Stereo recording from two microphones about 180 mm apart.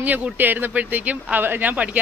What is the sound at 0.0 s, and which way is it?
Speech, 10° right (ahead or behind).